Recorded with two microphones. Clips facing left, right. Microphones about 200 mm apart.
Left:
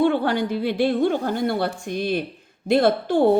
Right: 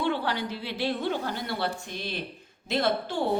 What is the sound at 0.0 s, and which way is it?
Speech, 50° left (ahead or behind).